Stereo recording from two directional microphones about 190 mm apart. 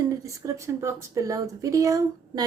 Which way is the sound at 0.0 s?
15° right (ahead or behind).